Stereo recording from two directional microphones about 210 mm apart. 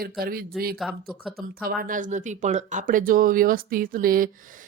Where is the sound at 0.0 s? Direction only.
45° right (ahead or behind).